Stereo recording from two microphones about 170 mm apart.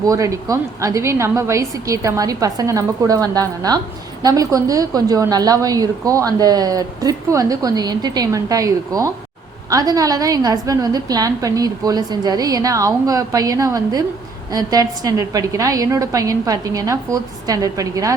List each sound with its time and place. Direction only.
0.0 s a woman's voice: 20° right (ahead or behind)